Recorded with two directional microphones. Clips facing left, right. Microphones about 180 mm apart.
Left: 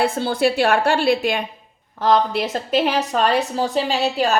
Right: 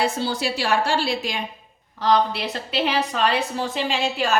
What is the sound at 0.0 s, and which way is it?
A woman's voice, 55° left (ahead or behind).